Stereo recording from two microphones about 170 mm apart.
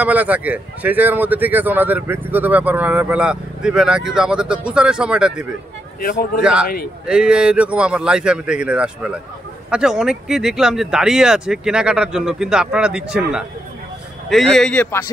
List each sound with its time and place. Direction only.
0.0 s speech: 10° right (ahead or behind)
5.9 s speech: 60° left (ahead or behind)
7.1 s speech: 5° right (ahead or behind)